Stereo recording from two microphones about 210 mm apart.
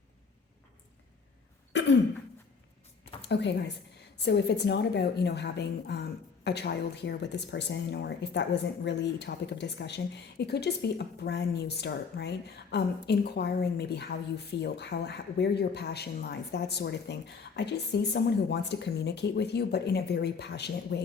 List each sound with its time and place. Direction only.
1.7 s throat clearing: 60° left (ahead or behind)
3.2 s a sound: 55° left (ahead or behind)
4.2 s a woman's voice: 55° left (ahead or behind)